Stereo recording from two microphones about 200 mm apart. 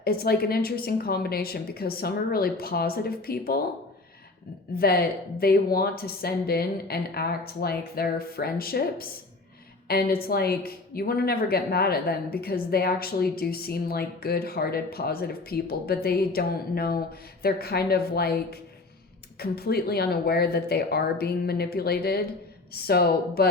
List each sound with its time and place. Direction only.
0.0 s a woman's voice: 50° left (ahead or behind)
4.7 s a woman's voice: 50° left (ahead or behind)